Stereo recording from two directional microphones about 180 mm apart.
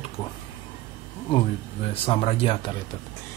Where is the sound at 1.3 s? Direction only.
35° left (ahead or behind).